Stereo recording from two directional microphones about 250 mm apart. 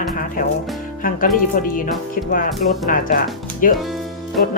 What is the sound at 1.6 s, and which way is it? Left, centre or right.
Speech, left.